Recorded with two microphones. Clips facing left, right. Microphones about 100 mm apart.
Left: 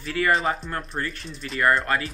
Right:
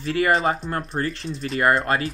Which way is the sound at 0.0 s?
30° right (ahead or behind).